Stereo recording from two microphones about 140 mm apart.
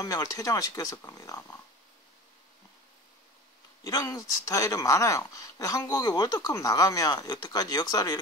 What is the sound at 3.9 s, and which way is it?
Speech, 25° left (ahead or behind).